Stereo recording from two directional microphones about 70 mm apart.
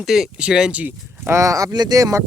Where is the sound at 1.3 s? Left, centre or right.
Right.